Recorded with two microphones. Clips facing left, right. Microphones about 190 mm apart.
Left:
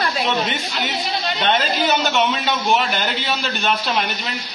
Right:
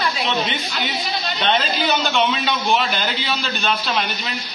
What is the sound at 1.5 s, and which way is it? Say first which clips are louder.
A man's voice: left 1 dB; 10° left (ahead or behind).